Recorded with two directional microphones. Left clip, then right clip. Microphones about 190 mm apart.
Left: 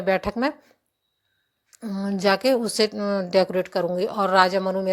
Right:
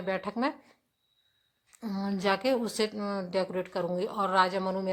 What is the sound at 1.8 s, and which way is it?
A woman's voice, 20° left (ahead or behind).